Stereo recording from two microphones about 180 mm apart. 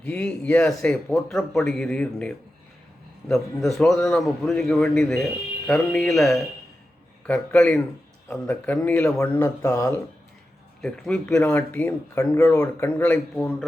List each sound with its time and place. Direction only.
0.0 s a man's voice: 5° left (ahead or behind)
10.8 s speech: centre (ahead or behind)